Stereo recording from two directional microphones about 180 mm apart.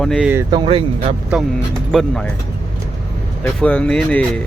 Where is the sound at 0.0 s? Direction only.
5° left (ahead or behind).